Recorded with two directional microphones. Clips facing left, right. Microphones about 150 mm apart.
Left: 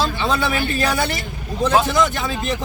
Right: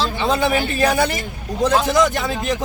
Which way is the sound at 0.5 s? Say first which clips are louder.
Right 3 dB; 20° right (ahead or behind).